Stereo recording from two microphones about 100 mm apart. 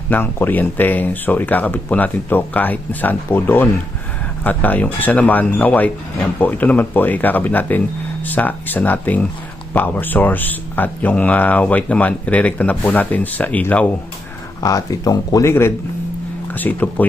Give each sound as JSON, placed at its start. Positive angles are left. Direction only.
{"t": 0.1, "sound": "speech", "side_deg": 20}
{"t": 14.6, "sound": "speech", "side_deg": 35}
{"t": 15.4, "sound": "speech", "side_deg": 25}